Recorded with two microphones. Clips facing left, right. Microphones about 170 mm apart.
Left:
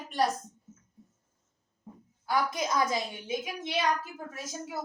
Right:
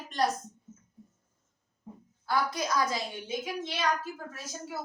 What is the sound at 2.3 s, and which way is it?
A woman's voice, 20° left (ahead or behind).